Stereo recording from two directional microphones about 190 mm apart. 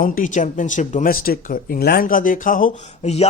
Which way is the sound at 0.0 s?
45° left (ahead or behind).